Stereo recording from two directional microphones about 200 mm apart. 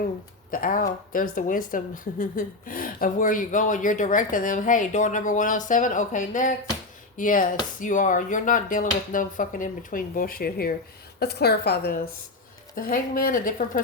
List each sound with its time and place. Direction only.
0.5 s speech: 45° left (ahead or behind)